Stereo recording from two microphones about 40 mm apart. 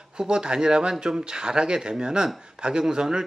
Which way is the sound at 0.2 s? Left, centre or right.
Right.